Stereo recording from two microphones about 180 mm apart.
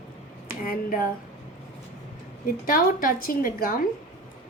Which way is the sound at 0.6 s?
50° left (ahead or behind).